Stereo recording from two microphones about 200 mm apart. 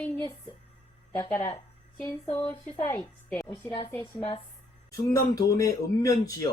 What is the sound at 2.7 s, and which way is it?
Speech, 10° left (ahead or behind).